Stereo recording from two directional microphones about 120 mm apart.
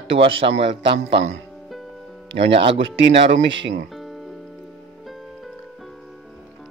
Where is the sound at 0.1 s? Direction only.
50° right (ahead or behind).